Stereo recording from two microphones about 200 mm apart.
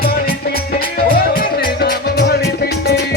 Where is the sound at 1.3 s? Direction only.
50° left (ahead or behind).